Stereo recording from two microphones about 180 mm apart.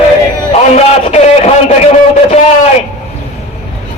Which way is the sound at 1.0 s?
40° left (ahead or behind).